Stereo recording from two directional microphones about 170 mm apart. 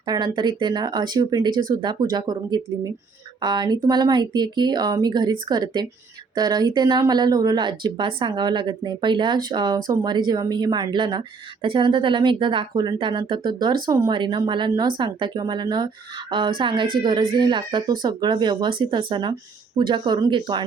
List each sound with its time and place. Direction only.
0.0 s speech: 25° right (ahead or behind)